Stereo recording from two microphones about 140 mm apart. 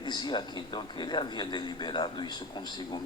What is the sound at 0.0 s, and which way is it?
A man's voice, 30° left (ahead or behind).